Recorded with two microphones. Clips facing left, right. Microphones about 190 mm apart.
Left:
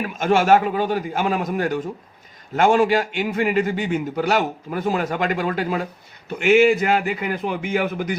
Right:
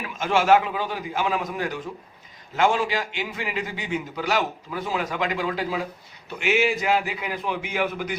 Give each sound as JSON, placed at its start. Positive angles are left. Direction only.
{"t": 0.0, "sound": "a man's voice", "side_deg": 50}